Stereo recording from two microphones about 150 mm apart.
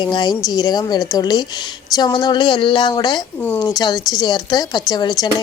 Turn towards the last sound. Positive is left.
turn(degrees=25)  # may be behind; listen again after turning